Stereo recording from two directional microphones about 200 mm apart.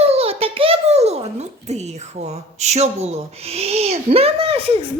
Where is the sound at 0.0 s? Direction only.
30° right (ahead or behind).